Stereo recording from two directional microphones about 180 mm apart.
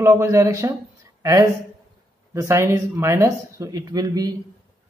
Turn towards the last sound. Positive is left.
turn(degrees=-20)  # may be behind; listen again after turning